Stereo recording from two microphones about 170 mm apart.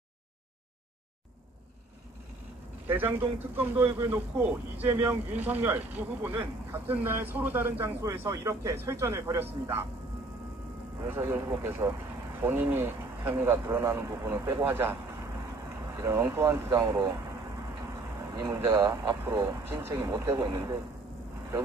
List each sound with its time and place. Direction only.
2.9 s a man's voice: 10° right (ahead or behind)
11.0 s a man's voice: 15° right (ahead or behind)